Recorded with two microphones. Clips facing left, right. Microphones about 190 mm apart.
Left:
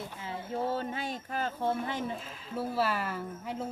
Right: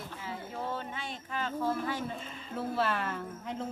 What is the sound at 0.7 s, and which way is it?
Speech, 40° left (ahead or behind).